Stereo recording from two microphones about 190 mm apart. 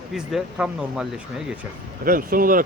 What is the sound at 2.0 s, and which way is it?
Speech, 50° right (ahead or behind).